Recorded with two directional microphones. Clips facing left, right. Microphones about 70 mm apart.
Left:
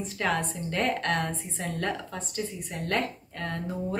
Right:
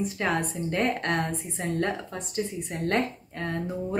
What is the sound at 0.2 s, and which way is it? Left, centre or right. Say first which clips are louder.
Speech: left 1 dB; right.